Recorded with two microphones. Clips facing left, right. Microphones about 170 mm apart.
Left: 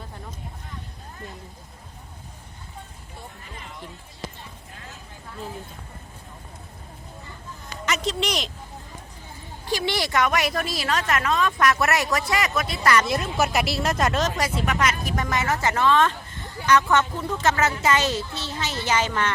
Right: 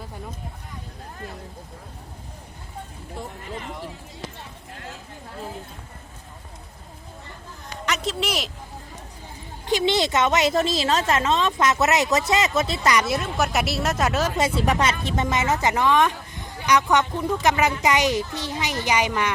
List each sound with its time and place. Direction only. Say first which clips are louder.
7.9 s a woman's voice: even; centre (ahead or behind)
9.6 s a woman's voice: right 5 dB; 20° right (ahead or behind)
13.1 s speech: even; centre (ahead or behind)
14.3 s a woman's voice: right 4 dB; 30° right (ahead or behind); by 19.3 s 10° right (ahead or behind)